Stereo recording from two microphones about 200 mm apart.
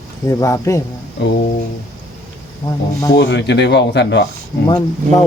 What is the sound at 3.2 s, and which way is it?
Speech, 60° left (ahead or behind).